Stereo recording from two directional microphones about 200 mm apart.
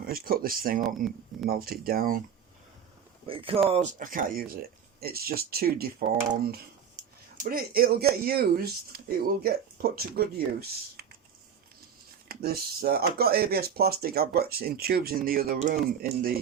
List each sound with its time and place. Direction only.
0.0 s speech: 45° right (ahead or behind)
3.2 s speech: 25° right (ahead or behind); by 5.9 s 50° right (ahead or behind)
7.3 s speech: 45° right (ahead or behind)
12.3 s speech: 50° right (ahead or behind)